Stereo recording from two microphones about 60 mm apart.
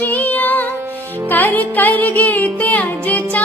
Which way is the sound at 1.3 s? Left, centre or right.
Left.